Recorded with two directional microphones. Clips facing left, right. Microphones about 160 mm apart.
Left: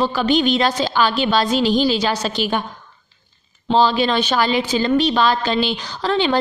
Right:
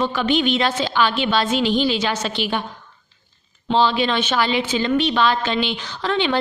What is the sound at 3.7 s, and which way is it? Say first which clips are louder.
A woman's voice: left 2 dB; 40° left (ahead or behind).